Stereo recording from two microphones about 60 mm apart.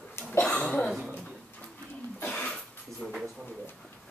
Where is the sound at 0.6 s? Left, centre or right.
Left.